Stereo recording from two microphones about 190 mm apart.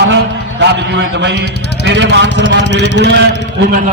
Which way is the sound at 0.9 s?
65° right (ahead or behind).